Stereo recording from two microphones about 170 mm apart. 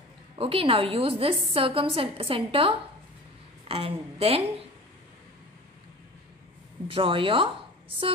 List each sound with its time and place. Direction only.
0.4 s a woman's voice: 35° right (ahead or behind)
6.9 s a woman's voice: 30° right (ahead or behind)